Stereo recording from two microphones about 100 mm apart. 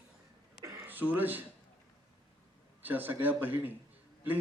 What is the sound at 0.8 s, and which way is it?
Speech, 20° right (ahead or behind).